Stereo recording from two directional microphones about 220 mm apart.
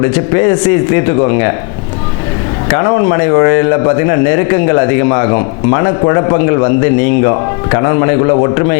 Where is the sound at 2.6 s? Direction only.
20° left (ahead or behind).